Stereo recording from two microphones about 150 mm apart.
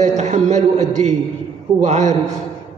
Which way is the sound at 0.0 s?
50° right (ahead or behind).